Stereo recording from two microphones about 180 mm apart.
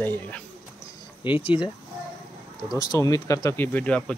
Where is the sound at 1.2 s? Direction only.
25° left (ahead or behind).